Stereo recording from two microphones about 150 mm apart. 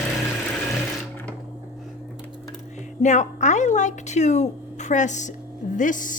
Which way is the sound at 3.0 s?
50° left (ahead or behind).